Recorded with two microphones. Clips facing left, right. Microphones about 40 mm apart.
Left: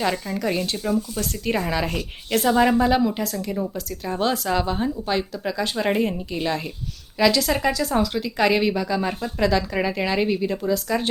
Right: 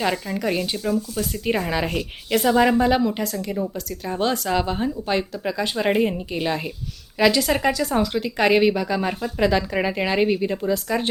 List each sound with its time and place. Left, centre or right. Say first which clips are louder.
0.0 s a woman's voice: even; centre
0.8 s speech: even; centre
1.2 s a woman's voice: right 1 dB; centre